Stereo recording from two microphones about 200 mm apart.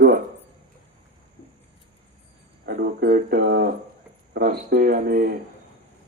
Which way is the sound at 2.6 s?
55° right (ahead or behind).